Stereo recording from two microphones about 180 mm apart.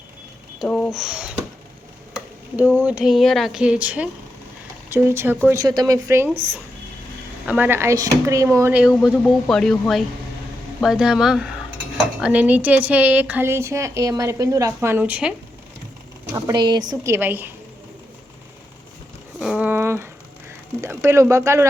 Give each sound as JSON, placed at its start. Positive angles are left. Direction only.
{"t": 0.6, "sound": "speech", "side_deg": 0}
{"t": 2.6, "sound": "speech", "side_deg": -10}
{"t": 7.4, "sound": "speech", "side_deg": -10}
{"t": 9.0, "sound": "speech", "side_deg": 5}
{"t": 16.3, "sound": "speech", "side_deg": -25}
{"t": 19.4, "sound": "speech", "side_deg": -5}